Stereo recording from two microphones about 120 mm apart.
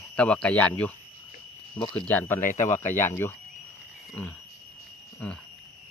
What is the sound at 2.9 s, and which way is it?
Speech, 20° left (ahead or behind).